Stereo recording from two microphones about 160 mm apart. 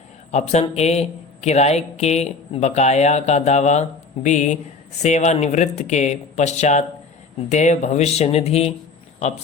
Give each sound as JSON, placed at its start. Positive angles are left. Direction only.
{"t": 0.3, "sound": "a man's voice", "side_deg": 45}